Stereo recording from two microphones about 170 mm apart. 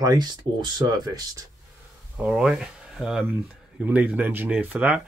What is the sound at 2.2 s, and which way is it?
Speech, 5° right (ahead or behind).